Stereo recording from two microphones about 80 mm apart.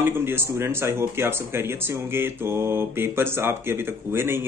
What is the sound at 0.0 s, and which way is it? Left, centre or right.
Speech, right.